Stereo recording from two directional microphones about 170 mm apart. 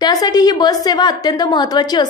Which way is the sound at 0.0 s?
20° left (ahead or behind).